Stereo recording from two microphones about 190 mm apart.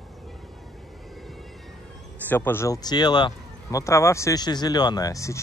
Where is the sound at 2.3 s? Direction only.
10° left (ahead or behind).